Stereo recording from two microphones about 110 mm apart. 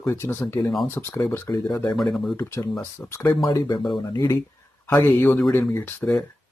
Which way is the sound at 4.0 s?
35° left (ahead or behind).